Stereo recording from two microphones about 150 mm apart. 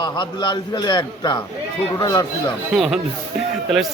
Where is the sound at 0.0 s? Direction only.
30° left (ahead or behind).